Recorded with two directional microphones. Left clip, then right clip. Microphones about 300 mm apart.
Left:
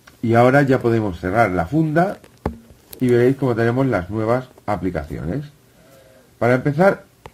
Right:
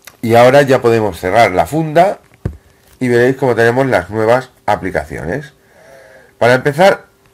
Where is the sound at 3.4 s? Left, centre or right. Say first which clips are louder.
Right 8 dB; right.